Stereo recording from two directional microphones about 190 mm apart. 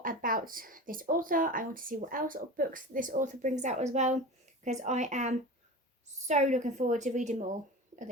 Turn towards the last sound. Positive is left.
turn(degrees=-40)  # may be behind; listen again after turning